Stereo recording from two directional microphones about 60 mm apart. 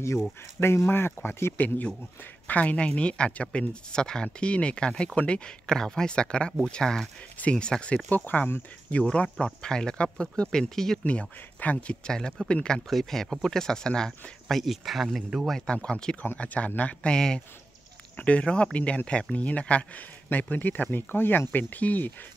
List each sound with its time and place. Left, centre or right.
0.8 s speech: left
2.4 s speech: left; by 11.0 s centre
11.1 s speech: left
14.6 s speech: centre
15.6 s speech: centre
17.1 s speech: centre; by 22.1 s left